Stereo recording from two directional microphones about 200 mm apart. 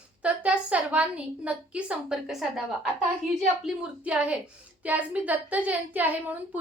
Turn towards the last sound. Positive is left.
turn(degrees=-10)  # may be behind; listen again after turning